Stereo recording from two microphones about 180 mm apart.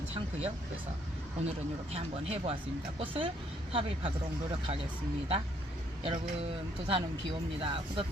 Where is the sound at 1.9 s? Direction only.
35° right (ahead or behind).